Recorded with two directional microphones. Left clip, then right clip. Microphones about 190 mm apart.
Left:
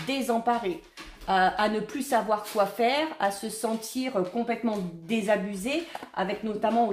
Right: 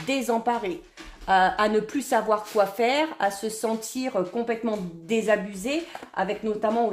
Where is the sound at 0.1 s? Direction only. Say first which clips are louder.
Right 2 dB; 35° right (ahead or behind).